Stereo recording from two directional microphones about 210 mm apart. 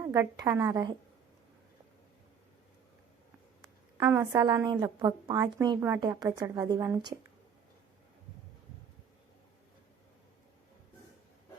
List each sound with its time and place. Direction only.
0.0 s a woman's voice: 15° right (ahead or behind)
3.9 s a woman's voice: 10° right (ahead or behind)